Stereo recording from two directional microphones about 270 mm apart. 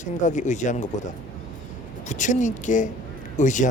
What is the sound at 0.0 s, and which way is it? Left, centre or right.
Speech, left.